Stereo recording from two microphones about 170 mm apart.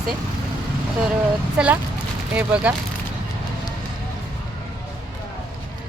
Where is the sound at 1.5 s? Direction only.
5° right (ahead or behind).